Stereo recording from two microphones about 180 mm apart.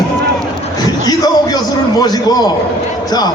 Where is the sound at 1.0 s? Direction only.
20° left (ahead or behind).